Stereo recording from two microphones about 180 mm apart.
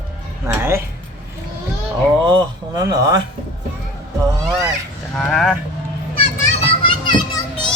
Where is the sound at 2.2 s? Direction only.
25° right (ahead or behind).